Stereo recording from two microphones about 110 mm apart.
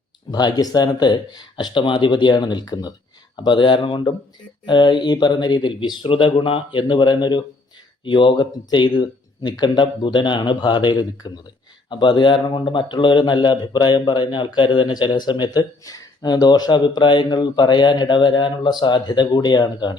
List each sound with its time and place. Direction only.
0.3 s speech: 40° left (ahead or behind)